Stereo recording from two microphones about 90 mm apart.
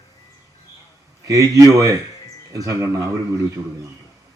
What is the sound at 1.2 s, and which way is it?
A man's voice, 40° right (ahead or behind).